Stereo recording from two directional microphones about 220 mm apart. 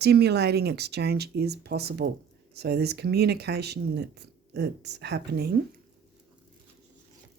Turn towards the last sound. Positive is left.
turn(degrees=-45)  # may be behind; listen again after turning